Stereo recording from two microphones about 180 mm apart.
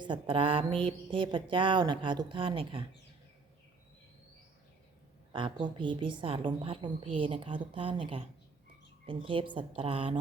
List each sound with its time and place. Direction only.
0.0 s a woman's voice: 30° right (ahead or behind)
5.3 s a woman's voice: 25° right (ahead or behind)